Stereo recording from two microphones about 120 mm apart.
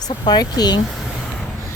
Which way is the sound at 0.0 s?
35° left (ahead or behind).